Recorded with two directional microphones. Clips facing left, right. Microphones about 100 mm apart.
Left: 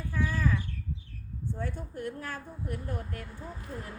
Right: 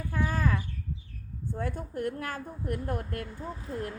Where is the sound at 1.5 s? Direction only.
50° right (ahead or behind).